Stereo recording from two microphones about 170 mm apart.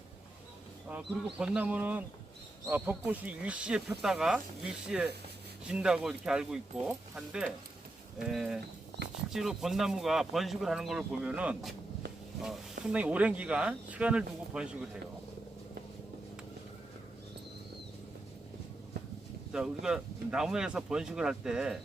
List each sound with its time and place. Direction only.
0.9 s speech: 5° right (ahead or behind)
9.0 s speech: 80° right
9.3 s speech: centre (ahead or behind)
12.8 s speech: 10° right (ahead or behind)
19.5 s speech: 5° right (ahead or behind)